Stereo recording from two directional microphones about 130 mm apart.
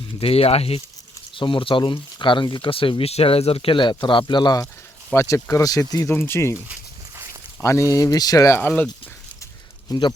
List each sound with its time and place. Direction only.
0.2 s speech: 50° left (ahead or behind); by 6.1 s 25° left (ahead or behind)
6.1 s speech: 15° left (ahead or behind)
7.6 s speech: 25° left (ahead or behind)
8.5 s speech: 15° left (ahead or behind)
9.9 s speech: 30° left (ahead or behind)